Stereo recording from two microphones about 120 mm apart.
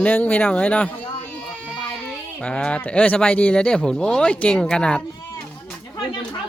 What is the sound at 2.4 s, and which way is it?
Speech, 10° left (ahead or behind).